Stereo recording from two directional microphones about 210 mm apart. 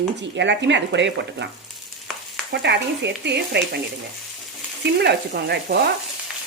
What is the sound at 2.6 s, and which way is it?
Speech, 55° right (ahead or behind).